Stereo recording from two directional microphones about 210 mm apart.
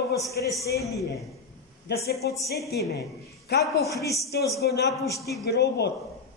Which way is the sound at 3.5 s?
50° left (ahead or behind).